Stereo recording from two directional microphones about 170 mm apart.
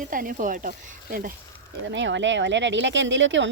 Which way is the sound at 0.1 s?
55° right (ahead or behind).